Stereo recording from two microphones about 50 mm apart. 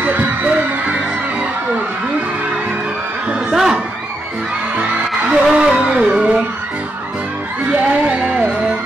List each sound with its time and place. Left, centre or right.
0.0 s music: right
3.5 s music: centre
5.3 s music: centre